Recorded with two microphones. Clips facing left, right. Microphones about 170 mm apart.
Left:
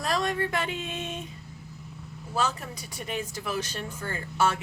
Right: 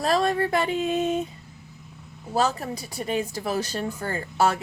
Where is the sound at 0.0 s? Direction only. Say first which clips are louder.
Right 5 dB; 30° right (ahead or behind).